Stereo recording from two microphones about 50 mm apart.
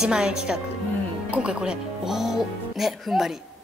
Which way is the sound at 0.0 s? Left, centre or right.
Centre.